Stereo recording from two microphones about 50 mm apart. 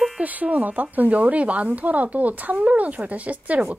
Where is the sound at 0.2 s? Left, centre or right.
Right.